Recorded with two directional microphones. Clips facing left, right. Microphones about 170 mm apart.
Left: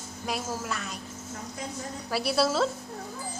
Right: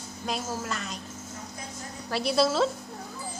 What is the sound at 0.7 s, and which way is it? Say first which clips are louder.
Speech: even; 5° left (ahead or behind).